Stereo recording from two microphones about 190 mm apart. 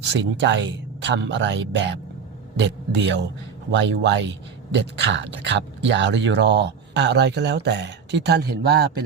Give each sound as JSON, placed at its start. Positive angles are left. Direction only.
{"t": 0.1, "sound": "speech", "side_deg": -70}